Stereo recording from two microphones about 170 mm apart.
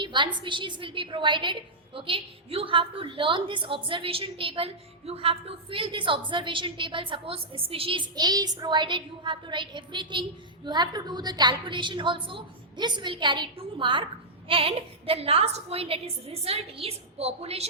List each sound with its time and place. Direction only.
0.0 s a woman's voice: 25° right (ahead or behind)